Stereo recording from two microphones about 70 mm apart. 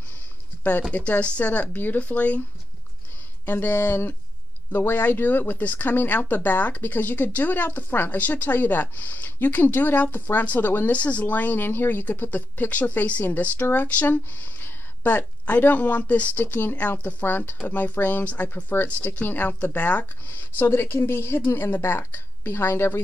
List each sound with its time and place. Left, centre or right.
0.9 s speech: left
3.4 s a woman's voice: left
20.2 s a woman's voice: left